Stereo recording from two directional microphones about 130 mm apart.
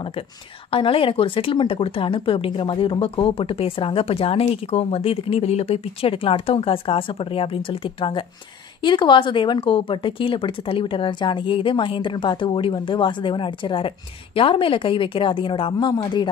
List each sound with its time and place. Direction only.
0.7 s speech: 45° left (ahead or behind)